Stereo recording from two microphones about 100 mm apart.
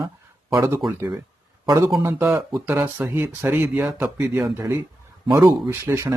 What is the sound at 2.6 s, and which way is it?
Speech, 20° right (ahead or behind).